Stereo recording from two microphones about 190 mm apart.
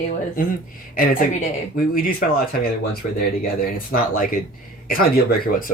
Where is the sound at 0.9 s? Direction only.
50° left (ahead or behind).